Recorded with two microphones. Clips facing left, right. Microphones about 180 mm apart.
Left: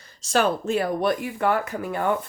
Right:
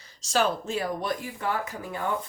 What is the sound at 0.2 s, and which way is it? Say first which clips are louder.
Speech: left 4 dB; 55° left (ahead or behind).